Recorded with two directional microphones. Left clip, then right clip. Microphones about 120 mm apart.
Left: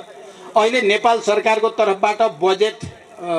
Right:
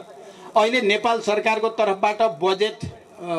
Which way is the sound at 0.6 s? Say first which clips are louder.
Left 3 dB; 25° right (ahead or behind).